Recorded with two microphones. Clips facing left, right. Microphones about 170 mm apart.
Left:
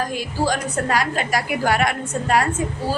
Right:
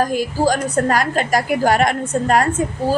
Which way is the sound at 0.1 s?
45° right (ahead or behind).